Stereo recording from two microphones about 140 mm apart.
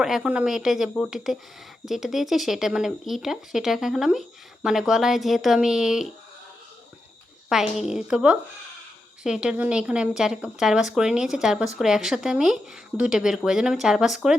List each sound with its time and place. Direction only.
0.0 s a woman's voice: 5° right (ahead or behind)
7.5 s a woman's voice: 5° right (ahead or behind)